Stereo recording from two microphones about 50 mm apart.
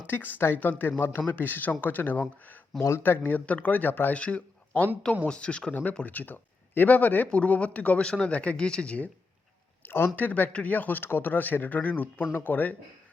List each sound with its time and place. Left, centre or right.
0.1 s speech: left
4.1 s speech: left
5.2 s speech: left
6.1 s speech: left
9.8 s a sound: left
10.2 s speech: left